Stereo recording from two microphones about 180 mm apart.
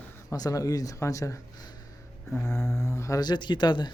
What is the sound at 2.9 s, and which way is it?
Speech, 15° left (ahead or behind).